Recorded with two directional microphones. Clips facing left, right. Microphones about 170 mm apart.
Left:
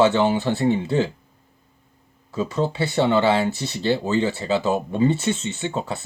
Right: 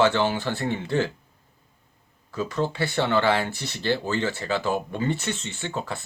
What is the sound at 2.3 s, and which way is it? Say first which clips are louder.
Speech: left 3 dB; 20° left (ahead or behind).